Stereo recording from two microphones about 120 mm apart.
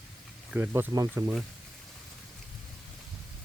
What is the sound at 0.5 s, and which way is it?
Speech, 15° right (ahead or behind).